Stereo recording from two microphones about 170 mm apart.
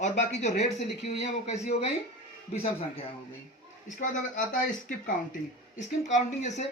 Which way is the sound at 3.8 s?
50° left (ahead or behind).